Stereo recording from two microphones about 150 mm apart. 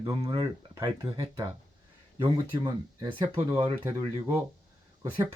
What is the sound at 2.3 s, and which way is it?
Speech, 20° right (ahead or behind).